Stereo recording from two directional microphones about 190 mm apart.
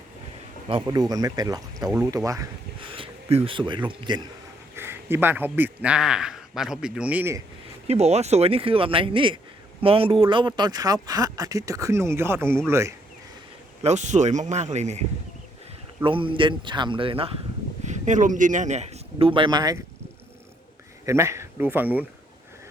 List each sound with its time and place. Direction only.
0.7 s speech: 25° right (ahead or behind)
2.9 s a sound: 30° right (ahead or behind)
3.8 s speech: 25° right (ahead or behind)
4.8 s a man's voice: 10° right (ahead or behind)
7.9 s speech: 35° right (ahead or behind); by 12.5 s 10° right (ahead or behind)
13.8 s speech: 40° right (ahead or behind)
16.0 s a man's voice: 25° right (ahead or behind)
21.1 s speech: 15° right (ahead or behind)